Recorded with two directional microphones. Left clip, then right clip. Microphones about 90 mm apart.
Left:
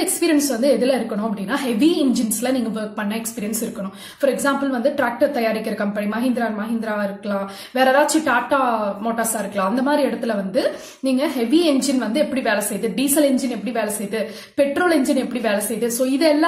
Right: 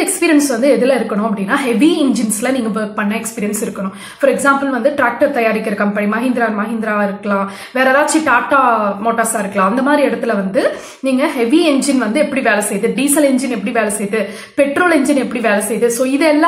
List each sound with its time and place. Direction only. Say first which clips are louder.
0.2 s a woman's voice: right 6 dB; 20° left (ahead or behind)
4.2 s a woman's voice: right 7 dB; 20° left (ahead or behind)